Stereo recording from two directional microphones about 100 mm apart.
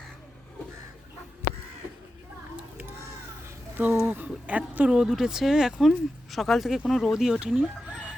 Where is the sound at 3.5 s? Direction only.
20° right (ahead or behind).